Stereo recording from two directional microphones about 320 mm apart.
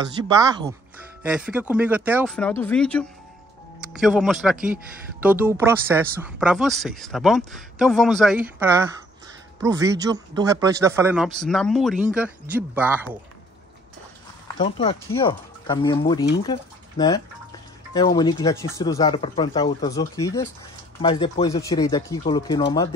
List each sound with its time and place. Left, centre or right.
0.0 s speech: centre
14.6 s speech: centre